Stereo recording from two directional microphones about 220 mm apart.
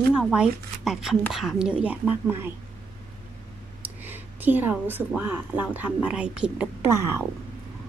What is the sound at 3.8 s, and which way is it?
Speech, 10° right (ahead or behind).